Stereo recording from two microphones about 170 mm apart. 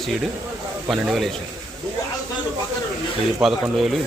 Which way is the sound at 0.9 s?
Centre (ahead or behind).